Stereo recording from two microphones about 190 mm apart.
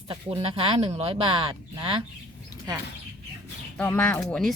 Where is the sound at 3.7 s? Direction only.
10° left (ahead or behind).